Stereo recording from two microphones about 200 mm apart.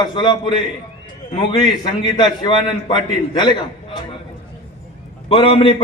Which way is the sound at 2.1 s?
20° left (ahead or behind).